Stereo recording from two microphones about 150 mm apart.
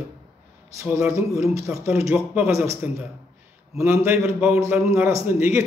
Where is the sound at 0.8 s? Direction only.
10° right (ahead or behind).